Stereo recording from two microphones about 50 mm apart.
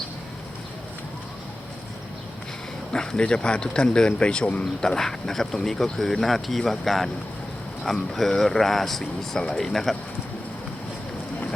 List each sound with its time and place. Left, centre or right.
2.9 s speech: centre
4.6 s speech: centre